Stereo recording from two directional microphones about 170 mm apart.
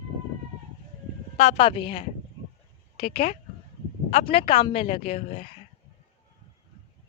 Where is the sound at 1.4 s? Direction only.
35° left (ahead or behind).